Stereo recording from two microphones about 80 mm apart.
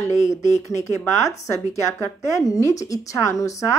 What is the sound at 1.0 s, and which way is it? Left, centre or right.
A woman's voice, left.